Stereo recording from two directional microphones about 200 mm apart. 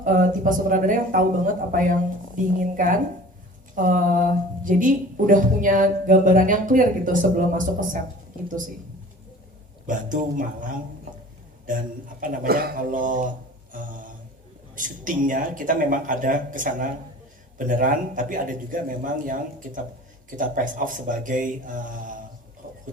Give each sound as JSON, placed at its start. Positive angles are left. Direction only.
{"t": 0.0, "sound": "speech", "side_deg": -40}
{"t": 9.8, "sound": "speech", "side_deg": -40}
{"t": 12.2, "sound": "speech", "side_deg": -45}
{"t": 13.7, "sound": "a sound", "side_deg": -40}
{"t": 14.8, "sound": "speech", "side_deg": -40}
{"t": 22.6, "sound": "a sound", "side_deg": -45}